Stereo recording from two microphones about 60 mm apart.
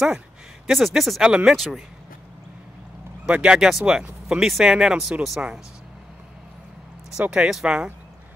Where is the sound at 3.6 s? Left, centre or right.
Centre.